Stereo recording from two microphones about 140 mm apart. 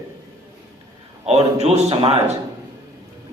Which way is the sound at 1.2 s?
50° right (ahead or behind).